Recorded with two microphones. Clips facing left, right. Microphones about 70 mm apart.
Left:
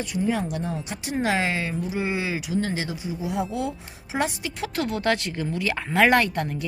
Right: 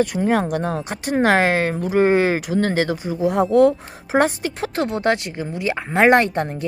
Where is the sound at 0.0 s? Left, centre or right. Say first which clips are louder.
Right 7 dB; right.